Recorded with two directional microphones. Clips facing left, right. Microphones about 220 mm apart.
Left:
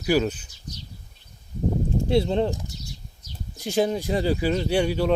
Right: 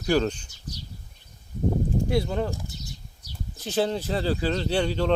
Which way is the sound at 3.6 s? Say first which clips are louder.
Left 2 dB; 10° left (ahead or behind).